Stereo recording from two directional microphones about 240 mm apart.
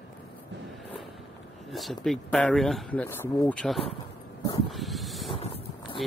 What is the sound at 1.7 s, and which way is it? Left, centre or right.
Speech, centre.